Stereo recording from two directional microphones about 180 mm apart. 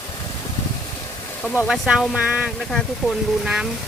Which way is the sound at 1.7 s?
5° right (ahead or behind).